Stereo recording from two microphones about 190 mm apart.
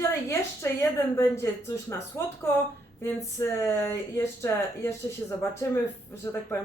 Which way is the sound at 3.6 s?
15° left (ahead or behind).